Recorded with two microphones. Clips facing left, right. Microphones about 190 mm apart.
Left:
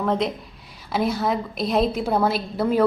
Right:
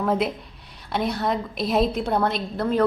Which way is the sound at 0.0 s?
5° right (ahead or behind).